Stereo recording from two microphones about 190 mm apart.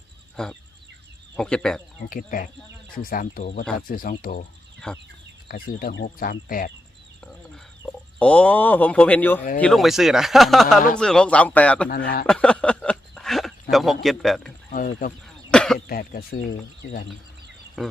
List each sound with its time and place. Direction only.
1.4 s speech: 5° left (ahead or behind)
2.0 s speech: 45° left (ahead or behind)
4.8 s speech: 5° left (ahead or behind)
5.8 s speech: 55° left (ahead or behind)
7.3 s chicken: 5° left (ahead or behind)
9.6 s a man's voice: 5° left (ahead or behind)
11.9 s speech: 50° left (ahead or behind)
12.2 s a sound: 5° left (ahead or behind)
15.9 s speech: 50° left (ahead or behind)
17.8 s speech: centre (ahead or behind)